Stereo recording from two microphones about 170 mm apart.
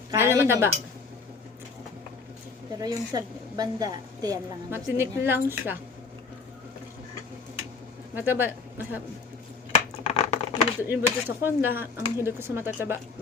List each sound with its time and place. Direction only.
0.1 s speech: 15° right (ahead or behind)
2.7 s a woman's voice: 20° right (ahead or behind)
8.1 s speech: 10° right (ahead or behind)
10.0 s a sound: 40° left (ahead or behind)
10.8 s speech: 10° right (ahead or behind)